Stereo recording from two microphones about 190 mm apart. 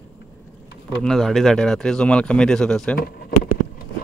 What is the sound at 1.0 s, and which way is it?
Speech, centre (ahead or behind).